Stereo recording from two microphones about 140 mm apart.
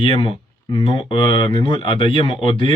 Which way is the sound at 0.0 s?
40° left (ahead or behind).